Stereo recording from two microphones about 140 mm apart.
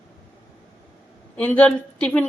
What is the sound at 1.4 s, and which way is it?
Speech, 10° left (ahead or behind).